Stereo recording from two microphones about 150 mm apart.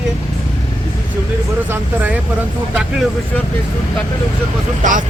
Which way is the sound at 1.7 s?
10° right (ahead or behind).